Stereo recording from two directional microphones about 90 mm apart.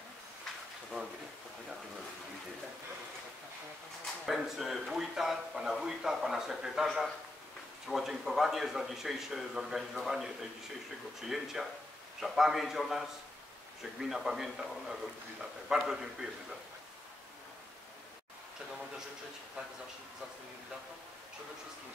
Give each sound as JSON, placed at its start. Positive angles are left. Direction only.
{"t": 4.0, "sound": "speech", "side_deg": 0}
{"t": 14.0, "sound": "speech", "side_deg": -5}